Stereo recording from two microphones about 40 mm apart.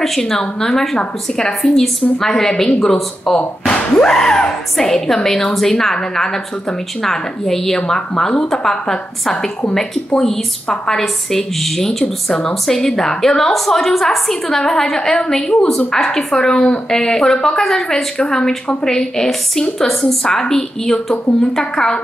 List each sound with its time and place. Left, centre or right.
0.2 s a woman's voice: centre
3.7 s a sound: left
4.1 s a woman's voice: centre
12.0 s a woman's voice: centre
20.2 s a woman's voice: centre